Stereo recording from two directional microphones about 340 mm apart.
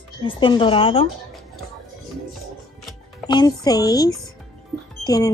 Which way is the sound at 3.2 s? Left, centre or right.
Centre.